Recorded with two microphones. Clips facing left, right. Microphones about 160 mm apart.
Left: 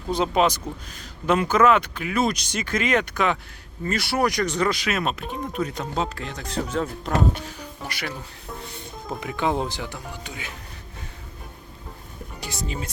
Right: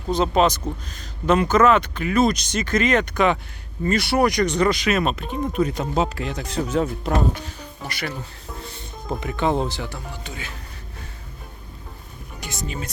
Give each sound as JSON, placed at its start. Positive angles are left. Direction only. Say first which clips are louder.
{"t": 0.1, "sound": "speech", "louder": "right 2 dB", "side_deg": 10}
{"t": 7.9, "sound": "speech", "louder": "right 3 dB", "side_deg": 10}
{"t": 9.0, "sound": "speech", "louder": "right 3 dB", "side_deg": 0}
{"t": 12.4, "sound": "speech", "louder": "right 1 dB", "side_deg": 30}